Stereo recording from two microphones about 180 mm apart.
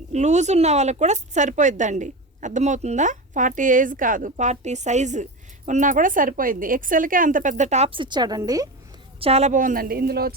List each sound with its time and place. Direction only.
0.1 s speech: 40° right (ahead or behind); by 8.7 s 20° right (ahead or behind)
9.2 s speech: 35° right (ahead or behind); by 10.3 s 60° right (ahead or behind)